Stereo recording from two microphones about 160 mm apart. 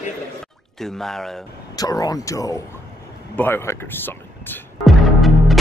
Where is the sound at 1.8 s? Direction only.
25° left (ahead or behind).